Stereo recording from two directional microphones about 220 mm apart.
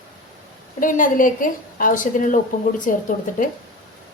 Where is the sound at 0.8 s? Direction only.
35° left (ahead or behind).